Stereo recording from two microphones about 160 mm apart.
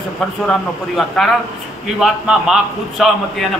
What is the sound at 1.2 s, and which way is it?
A man's voice, centre (ahead or behind).